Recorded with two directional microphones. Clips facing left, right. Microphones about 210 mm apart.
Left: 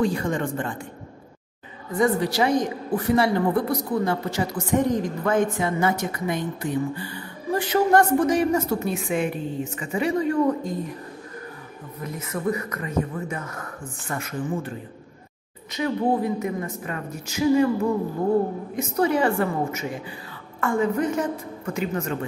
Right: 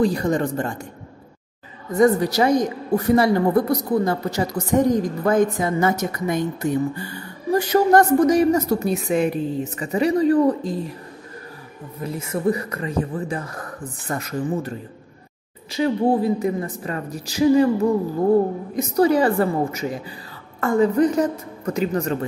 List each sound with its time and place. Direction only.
0.0 s a woman's voice: 40° right (ahead or behind)
1.9 s a woman's voice: 40° right (ahead or behind)
12.0 s a woman's voice: 30° right (ahead or behind)
16.1 s a woman's voice: 30° right (ahead or behind)
18.8 s a woman's voice: 35° right (ahead or behind)